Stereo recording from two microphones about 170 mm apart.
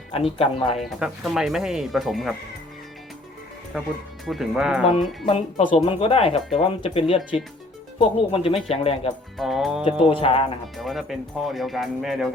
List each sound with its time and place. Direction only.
0.1 s speech: 35° left (ahead or behind)
0.8 s speech: centre (ahead or behind)
3.7 s speech: 5° right (ahead or behind)
5.6 s speech: 35° left (ahead or behind)
7.2 s speech: centre (ahead or behind)
7.9 s speech: 35° left (ahead or behind)
9.4 s speech: centre (ahead or behind)
10.1 s speech: 35° left (ahead or behind)
10.8 s speech: centre (ahead or behind)